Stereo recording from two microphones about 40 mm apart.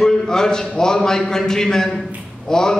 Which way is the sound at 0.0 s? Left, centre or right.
Centre.